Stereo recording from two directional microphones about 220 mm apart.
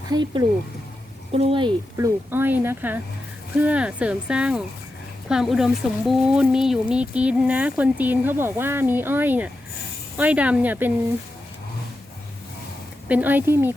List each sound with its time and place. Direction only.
0.1 s speech: 20° right (ahead or behind)
2.3 s speech: 10° right (ahead or behind)
13.1 s speech: 5° right (ahead or behind)